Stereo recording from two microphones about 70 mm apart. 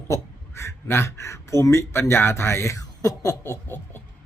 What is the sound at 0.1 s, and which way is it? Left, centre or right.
Speech, left.